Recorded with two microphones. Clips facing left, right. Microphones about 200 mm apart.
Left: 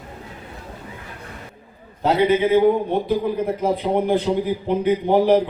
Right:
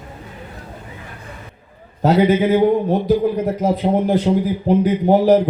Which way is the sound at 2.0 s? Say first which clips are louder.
Right 3 dB; 45° right (ahead or behind).